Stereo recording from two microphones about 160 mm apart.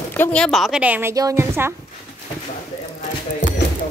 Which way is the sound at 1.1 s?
20° right (ahead or behind).